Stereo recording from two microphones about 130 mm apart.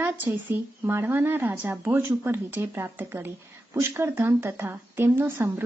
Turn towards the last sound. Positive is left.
turn(degrees=-20)  # may be behind; listen again after turning